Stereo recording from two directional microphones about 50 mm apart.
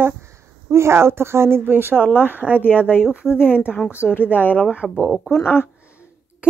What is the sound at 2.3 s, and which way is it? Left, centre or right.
Speech, right.